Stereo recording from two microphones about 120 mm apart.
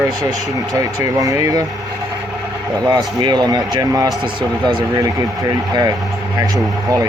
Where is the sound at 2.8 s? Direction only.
35° right (ahead or behind).